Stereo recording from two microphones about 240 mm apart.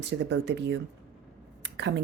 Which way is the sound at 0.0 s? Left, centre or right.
Right.